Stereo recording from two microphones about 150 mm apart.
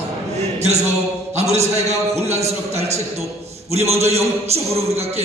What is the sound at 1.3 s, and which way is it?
A man's voice, 45° right (ahead or behind).